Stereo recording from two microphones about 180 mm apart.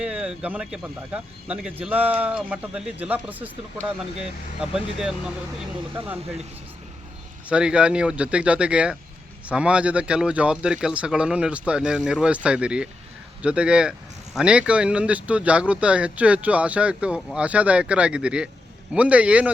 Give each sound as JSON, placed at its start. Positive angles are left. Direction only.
{"t": 0.0, "sound": "speech", "side_deg": -5}
{"t": 7.4, "sound": "speech", "side_deg": -5}